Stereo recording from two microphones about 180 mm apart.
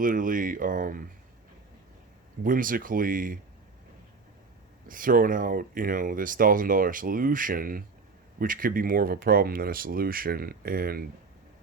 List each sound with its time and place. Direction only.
0.0 s speech: 50° right (ahead or behind)
2.4 s speech: 50° right (ahead or behind)
4.9 s speech: 50° right (ahead or behind)